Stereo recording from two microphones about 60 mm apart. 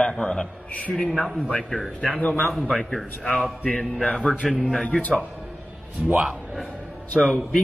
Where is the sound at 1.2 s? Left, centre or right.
Centre.